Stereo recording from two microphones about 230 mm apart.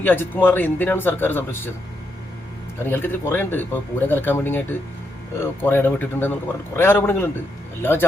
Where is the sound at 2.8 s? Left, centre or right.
Centre.